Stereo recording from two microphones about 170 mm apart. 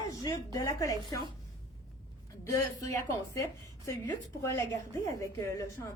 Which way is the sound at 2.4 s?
20° left (ahead or behind).